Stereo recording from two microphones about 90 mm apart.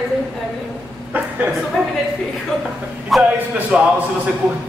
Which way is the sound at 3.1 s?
Centre (ahead or behind).